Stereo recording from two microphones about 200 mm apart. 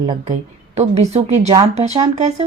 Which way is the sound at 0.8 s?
35° right (ahead or behind).